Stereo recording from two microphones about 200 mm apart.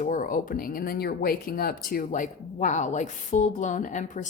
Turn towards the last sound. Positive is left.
turn(degrees=40)  # may be behind; listen again after turning